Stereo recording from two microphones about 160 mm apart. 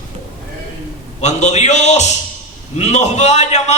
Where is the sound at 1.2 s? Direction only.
45° left (ahead or behind).